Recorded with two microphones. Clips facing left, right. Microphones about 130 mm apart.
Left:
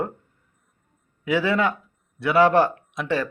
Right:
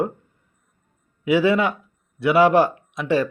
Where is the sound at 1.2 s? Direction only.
15° right (ahead or behind).